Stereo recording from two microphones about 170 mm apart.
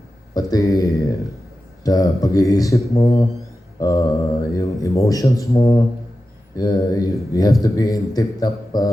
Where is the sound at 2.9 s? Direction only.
35° left (ahead or behind).